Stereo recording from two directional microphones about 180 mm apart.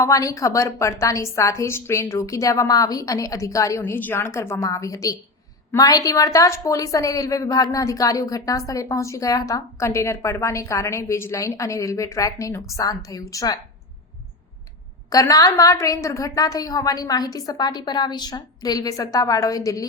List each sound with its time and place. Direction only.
0.0 s a woman's voice: 20° left (ahead or behind)
15.1 s a woman's voice: 20° left (ahead or behind)